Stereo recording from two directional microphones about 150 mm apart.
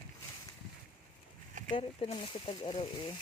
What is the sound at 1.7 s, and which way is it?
Speech, 40° left (ahead or behind).